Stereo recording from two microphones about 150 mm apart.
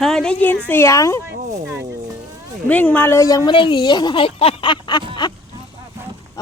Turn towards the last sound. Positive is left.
turn(degrees=30)  # may be behind; listen again after turning